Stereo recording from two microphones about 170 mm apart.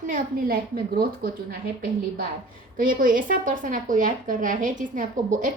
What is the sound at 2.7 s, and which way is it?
A woman's voice, 55° right (ahead or behind).